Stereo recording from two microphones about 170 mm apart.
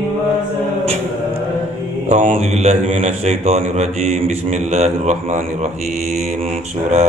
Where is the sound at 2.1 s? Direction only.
40° right (ahead or behind).